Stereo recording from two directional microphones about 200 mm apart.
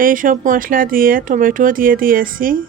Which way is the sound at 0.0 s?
45° right (ahead or behind).